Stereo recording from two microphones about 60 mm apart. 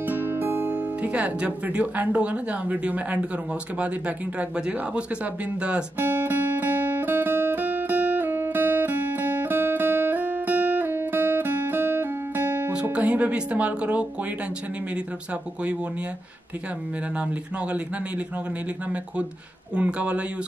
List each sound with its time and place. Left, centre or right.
0.0 s speech: right
4.4 s speech: centre
5.9 s music: right
12.9 s speech: right
17.2 s speech: right
19.7 s speech: right